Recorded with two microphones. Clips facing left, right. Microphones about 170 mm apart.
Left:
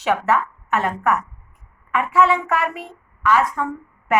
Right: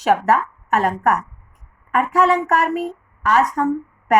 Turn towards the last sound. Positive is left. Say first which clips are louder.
# right 4 dB
turn(degrees=-40)  # may be behind; listen again after turning